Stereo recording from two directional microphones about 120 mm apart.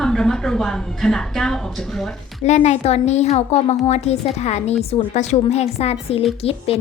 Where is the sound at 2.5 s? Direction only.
70° left (ahead or behind).